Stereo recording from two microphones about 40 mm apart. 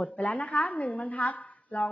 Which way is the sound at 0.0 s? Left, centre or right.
Left.